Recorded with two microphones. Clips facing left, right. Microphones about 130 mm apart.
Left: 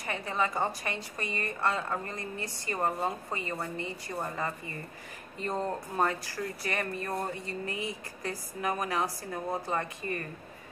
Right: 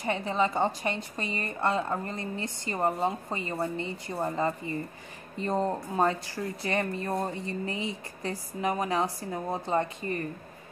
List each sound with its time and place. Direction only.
0.0 s speech: 25° right (ahead or behind)